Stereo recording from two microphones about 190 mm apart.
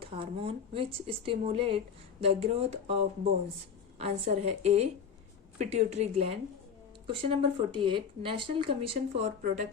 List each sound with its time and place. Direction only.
0.0 s a woman's voice: 30° right (ahead or behind)